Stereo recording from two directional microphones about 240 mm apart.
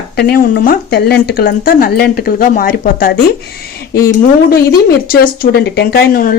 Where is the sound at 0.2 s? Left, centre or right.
Left.